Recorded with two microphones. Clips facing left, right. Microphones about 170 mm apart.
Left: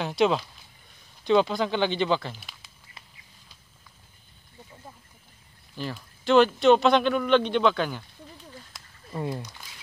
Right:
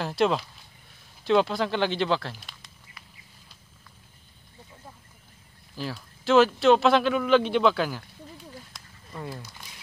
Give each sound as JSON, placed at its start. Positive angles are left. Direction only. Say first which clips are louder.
{"t": 0.0, "sound": "speech", "louder": "left 1 dB", "side_deg": 0}
{"t": 5.8, "sound": "speech", "louder": "even", "side_deg": 0}
{"t": 8.7, "sound": "a sound", "louder": "even", "side_deg": 5}
{"t": 9.1, "sound": "speech", "louder": "left 6 dB", "side_deg": 20}